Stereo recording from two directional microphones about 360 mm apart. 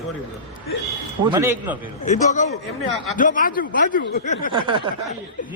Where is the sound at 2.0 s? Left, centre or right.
Centre.